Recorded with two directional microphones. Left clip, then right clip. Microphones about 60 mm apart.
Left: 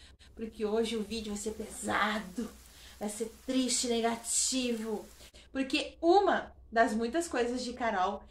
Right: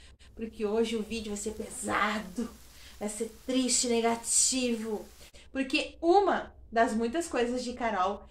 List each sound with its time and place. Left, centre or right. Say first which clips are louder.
0.6 s a woman's voice: right 2 dB; left
1.9 s speech: right 1 dB; centre
5.5 s a woman's voice: right 2 dB; left